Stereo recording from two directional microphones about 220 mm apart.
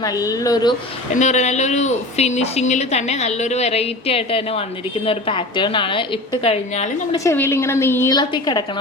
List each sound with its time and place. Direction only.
0.0 s a woman's voice: 15° left (ahead or behind)
1.1 s a woman's voice: 30° left (ahead or behind)
7.3 s a woman's voice: 10° left (ahead or behind)